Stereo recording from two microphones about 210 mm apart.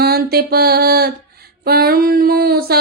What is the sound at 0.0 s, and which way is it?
Music, 45° right (ahead or behind).